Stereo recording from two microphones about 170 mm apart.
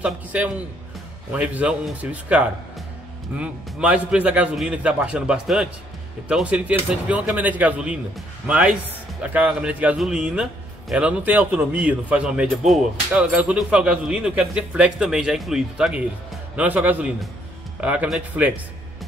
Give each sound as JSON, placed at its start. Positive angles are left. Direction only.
{"t": 0.0, "sound": "a man's voice", "side_deg": -10}